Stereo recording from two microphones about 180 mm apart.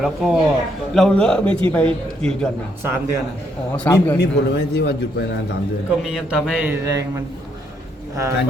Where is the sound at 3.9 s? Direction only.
10° left (ahead or behind).